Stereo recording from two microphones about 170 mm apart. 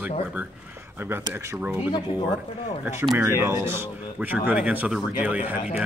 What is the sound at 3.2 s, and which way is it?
Speech, 15° right (ahead or behind).